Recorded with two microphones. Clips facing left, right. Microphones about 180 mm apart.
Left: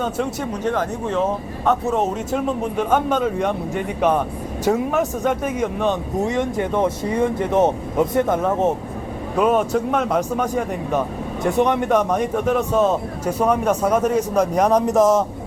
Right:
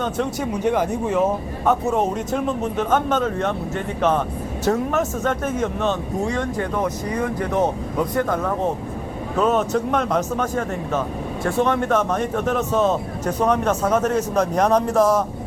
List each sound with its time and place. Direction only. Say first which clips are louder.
0.0 s speech: even; 5° left (ahead or behind)
0.6 s speech: right 2 dB; 10° right (ahead or behind); by 8.7 s 20° left (ahead or behind)
9.4 s speech: left 2 dB; 10° left (ahead or behind)